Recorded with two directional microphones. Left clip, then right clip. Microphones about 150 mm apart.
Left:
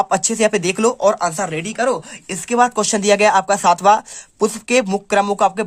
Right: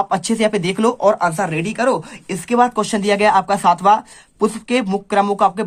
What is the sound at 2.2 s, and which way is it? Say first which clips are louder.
Speech: even; 25° left (ahead or behind).